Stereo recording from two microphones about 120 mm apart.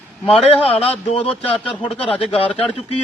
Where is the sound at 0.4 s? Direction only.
55° left (ahead or behind).